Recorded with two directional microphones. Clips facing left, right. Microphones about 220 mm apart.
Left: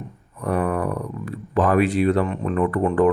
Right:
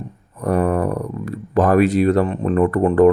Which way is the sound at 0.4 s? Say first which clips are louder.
Right 4 dB; 40° right (ahead or behind).